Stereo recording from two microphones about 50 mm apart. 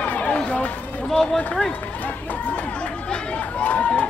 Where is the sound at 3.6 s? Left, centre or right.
Left.